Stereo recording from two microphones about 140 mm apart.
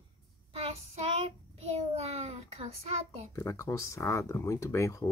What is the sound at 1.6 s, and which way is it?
Child singing, 50° right (ahead or behind).